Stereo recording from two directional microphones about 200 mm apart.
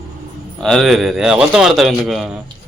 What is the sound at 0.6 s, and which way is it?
A man's voice, centre (ahead or behind).